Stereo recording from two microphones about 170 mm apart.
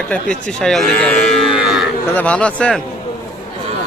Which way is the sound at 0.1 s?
5° left (ahead or behind).